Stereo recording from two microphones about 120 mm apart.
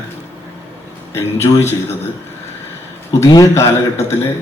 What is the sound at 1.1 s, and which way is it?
Speech, 20° left (ahead or behind).